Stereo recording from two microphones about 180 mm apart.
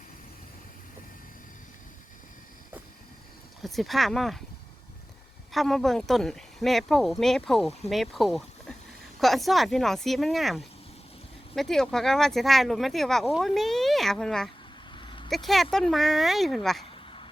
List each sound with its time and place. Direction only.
3.6 s speech: centre (ahead or behind)
5.5 s speech: centre (ahead or behind)
14.9 s vehicle: 25° left (ahead or behind)
15.3 s speech: centre (ahead or behind)
16.9 s a sound: 30° left (ahead or behind)